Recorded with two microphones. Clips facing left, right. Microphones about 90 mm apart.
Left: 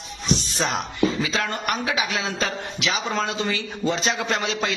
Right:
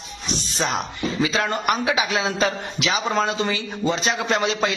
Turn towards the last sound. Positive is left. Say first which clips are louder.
# right 3 dB
turn(degrees=0)  # may be behind; listen again after turning